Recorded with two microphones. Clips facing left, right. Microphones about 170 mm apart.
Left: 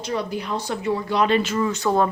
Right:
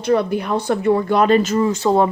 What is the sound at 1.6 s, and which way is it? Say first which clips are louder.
Speech: right 5 dB; 25° right (ahead or behind).